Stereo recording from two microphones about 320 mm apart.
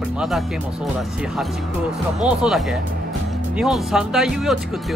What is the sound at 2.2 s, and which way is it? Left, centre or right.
Speech, centre.